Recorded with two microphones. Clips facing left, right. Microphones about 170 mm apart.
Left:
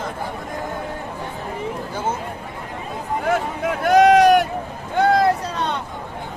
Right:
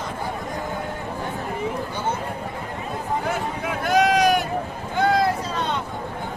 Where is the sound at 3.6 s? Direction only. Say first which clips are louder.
Left 6 dB; 65° left (ahead or behind).